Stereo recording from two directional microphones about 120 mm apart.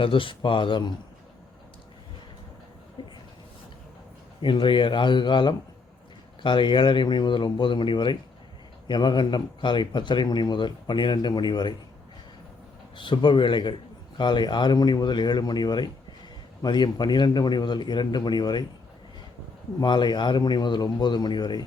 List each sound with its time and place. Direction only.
0.0 s speech: 45° left (ahead or behind)
3.0 s a sound: 45° left (ahead or behind)
4.4 s a man's voice: 45° left (ahead or behind)
13.0 s a man's voice: 40° left (ahead or behind)
19.8 s a man's voice: 40° left (ahead or behind)